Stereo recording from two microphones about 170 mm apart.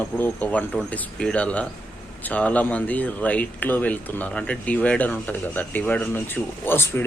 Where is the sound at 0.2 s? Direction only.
10° left (ahead or behind).